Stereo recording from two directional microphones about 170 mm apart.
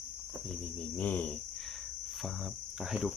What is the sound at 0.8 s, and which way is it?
Cricket, 10° left (ahead or behind).